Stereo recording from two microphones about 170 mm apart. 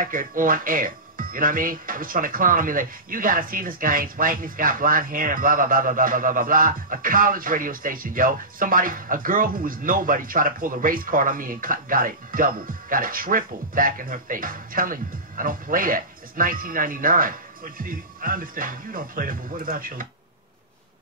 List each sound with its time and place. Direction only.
0.0 s speech: 55° right (ahead or behind)